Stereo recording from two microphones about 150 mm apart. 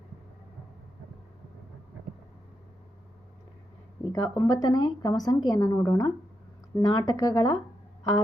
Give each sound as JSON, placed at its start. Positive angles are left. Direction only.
{"t": 4.1, "sound": "speech", "side_deg": 25}